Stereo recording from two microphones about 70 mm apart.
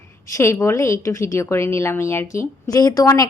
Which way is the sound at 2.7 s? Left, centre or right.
Left.